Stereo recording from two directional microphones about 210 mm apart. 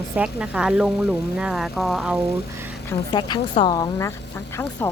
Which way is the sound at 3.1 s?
20° left (ahead or behind).